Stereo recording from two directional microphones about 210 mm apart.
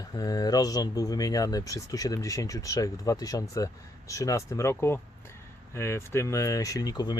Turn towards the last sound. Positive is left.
turn(degrees=20)  # may be behind; listen again after turning